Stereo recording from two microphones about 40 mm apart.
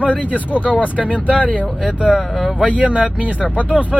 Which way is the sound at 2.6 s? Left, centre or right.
Right.